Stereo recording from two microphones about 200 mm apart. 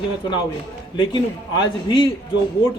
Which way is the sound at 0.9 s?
20° left (ahead or behind).